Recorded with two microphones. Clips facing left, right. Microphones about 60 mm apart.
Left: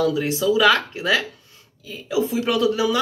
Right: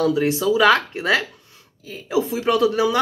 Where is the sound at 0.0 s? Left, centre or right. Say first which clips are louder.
Right 1 dB; right.